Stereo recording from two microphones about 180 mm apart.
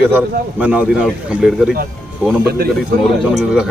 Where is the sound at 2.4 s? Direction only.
60° right (ahead or behind).